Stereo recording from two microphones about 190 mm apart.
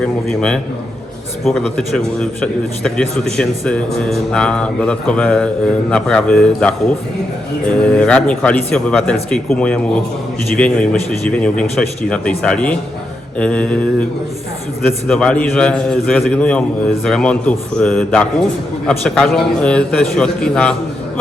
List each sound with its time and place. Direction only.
0.0 s a man's voice: 5° left (ahead or behind)
15.0 s a man's voice: 5° left (ahead or behind)